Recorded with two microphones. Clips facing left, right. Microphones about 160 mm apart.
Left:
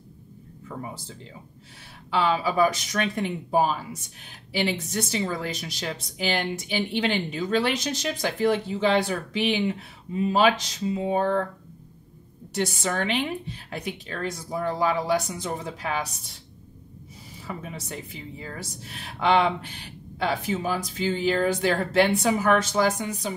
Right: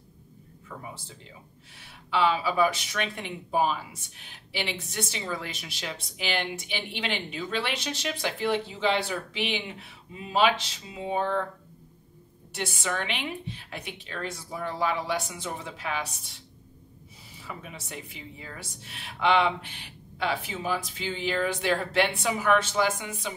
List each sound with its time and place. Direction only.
2.0 s speech: 40° left (ahead or behind)
12.5 s speech: 40° left (ahead or behind)
17.5 s speech: 40° left (ahead or behind)